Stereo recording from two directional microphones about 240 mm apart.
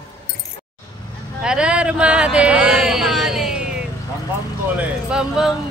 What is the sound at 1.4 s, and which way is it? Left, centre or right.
Speech, centre.